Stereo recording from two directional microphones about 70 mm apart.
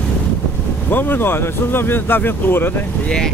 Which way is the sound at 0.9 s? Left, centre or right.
Left.